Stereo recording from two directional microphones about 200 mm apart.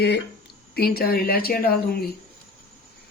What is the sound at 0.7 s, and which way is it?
Speech, 50° left (ahead or behind).